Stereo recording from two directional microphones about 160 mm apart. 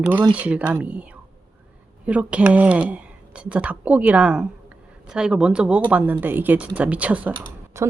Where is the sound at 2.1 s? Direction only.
10° right (ahead or behind).